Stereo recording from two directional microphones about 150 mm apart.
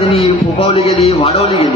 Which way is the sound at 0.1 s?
40° left (ahead or behind).